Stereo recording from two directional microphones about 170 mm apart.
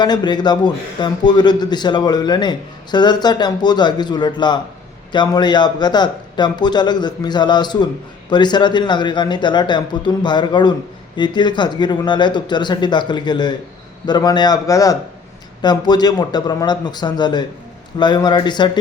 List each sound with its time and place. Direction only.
0.0 s a man's voice: 25° left (ahead or behind)